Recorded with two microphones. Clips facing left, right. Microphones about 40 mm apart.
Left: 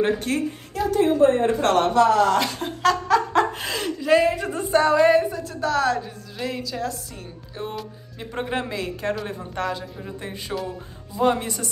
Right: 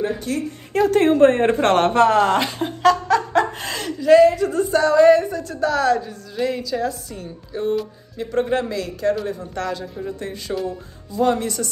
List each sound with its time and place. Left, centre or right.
0.3 s a woman's voice: left
0.7 s speech: right
2.6 s speech: centre
4.4 s speech: left; by 7.8 s centre
8.2 s speech: centre
9.6 s speech: centre